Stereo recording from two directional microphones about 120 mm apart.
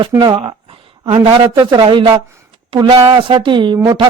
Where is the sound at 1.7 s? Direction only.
40° right (ahead or behind).